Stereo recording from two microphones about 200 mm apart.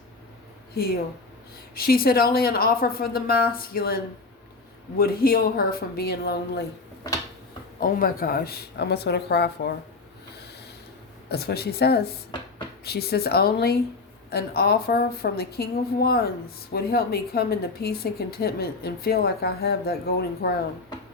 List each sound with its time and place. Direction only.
1.7 s a woman's voice: 50° left (ahead or behind)
7.8 s a woman's voice: 45° left (ahead or behind)
11.3 s a woman's voice: 50° left (ahead or behind)